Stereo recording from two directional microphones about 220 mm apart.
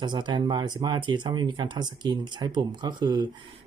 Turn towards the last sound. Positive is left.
turn(degrees=-20)  # may be behind; listen again after turning